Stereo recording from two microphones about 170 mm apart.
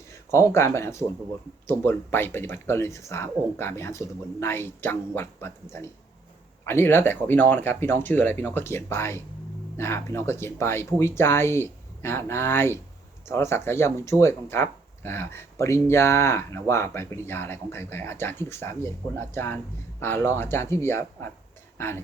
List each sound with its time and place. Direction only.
0.1 s speech: 15° left (ahead or behind)